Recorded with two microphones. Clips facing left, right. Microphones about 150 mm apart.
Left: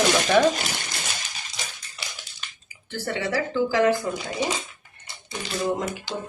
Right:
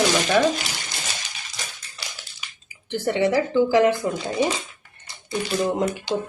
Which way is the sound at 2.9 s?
20° right (ahead or behind).